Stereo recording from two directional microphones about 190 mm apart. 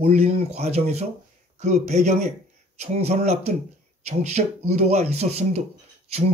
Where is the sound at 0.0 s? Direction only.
35° right (ahead or behind).